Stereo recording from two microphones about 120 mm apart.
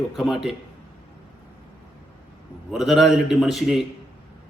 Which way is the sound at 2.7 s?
5° right (ahead or behind).